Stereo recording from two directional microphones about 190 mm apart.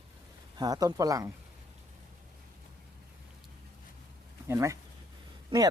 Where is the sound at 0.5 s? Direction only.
20° right (ahead or behind).